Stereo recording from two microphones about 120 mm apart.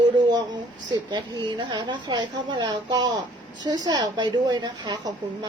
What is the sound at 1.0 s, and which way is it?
A woman's voice, 40° right (ahead or behind).